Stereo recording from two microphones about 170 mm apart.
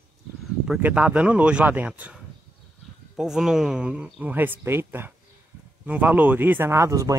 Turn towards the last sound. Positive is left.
turn(degrees=-20)  # may be behind; listen again after turning